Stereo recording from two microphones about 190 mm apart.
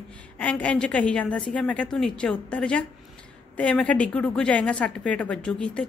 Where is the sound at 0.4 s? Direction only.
5° left (ahead or behind).